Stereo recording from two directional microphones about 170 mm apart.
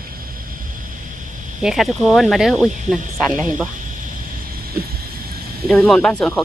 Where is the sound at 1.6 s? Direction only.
Centre (ahead or behind).